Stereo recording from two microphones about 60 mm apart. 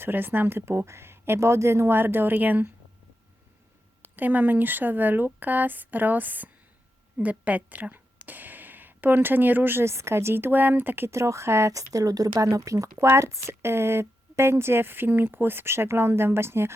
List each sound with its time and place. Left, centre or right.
0.0 s a woman's voice: right
2.0 s speech: right
4.0 s a woman's voice: right
9.9 s speech: right
11.1 s a woman's voice: right
11.7 s speech: right
13.1 s a woman's voice: right